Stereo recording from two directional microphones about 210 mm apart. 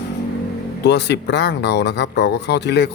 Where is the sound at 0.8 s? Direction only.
55° left (ahead or behind).